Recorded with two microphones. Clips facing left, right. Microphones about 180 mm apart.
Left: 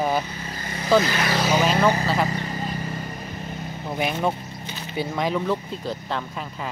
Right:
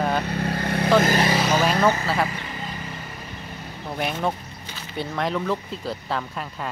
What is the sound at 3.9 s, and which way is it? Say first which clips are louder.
Speech: left 1 dB; 5° left (ahead or behind).